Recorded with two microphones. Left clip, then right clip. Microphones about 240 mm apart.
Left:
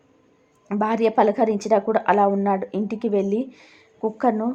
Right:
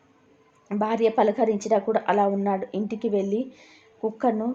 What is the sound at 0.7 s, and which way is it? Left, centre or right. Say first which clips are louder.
Speech: left 2 dB; left.